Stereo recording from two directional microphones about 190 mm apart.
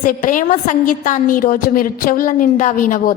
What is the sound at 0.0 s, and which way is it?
A woman's voice, 45° left (ahead or behind).